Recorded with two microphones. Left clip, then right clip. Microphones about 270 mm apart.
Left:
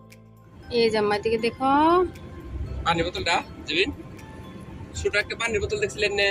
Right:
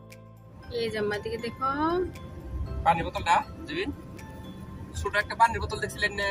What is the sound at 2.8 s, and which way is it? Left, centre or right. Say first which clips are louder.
Speech: left 1 dB; right.